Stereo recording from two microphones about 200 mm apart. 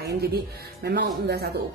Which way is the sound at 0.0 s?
55° right (ahead or behind).